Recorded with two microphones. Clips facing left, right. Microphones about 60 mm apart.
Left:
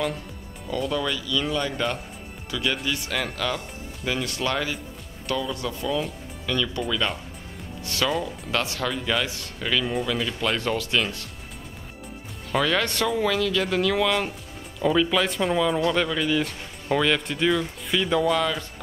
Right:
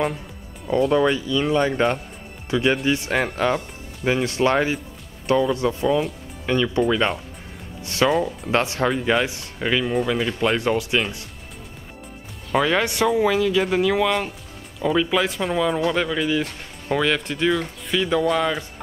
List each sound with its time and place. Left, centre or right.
0.9 s speech: right
7.8 s music: right
8.5 s speech: right
12.5 s speech: centre
18.4 s speech: centre